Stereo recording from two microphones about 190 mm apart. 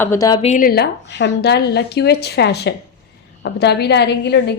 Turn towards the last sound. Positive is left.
turn(degrees=60)  # may be behind; listen again after turning